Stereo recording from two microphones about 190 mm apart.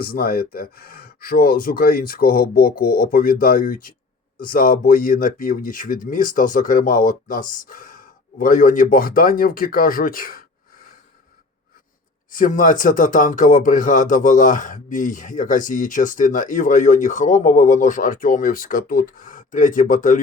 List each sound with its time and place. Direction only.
0.0 s speech: 50° left (ahead or behind)
12.3 s speech: 45° left (ahead or behind)